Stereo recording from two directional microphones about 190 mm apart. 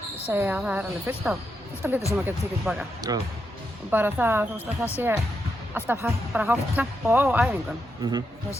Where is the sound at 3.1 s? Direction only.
20° right (ahead or behind).